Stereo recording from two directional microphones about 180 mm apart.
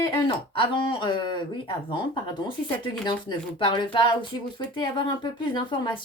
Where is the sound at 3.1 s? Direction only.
30° left (ahead or behind).